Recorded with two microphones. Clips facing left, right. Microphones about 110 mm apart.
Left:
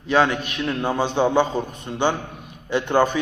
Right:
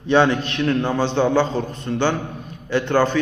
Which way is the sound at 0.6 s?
10° left (ahead or behind).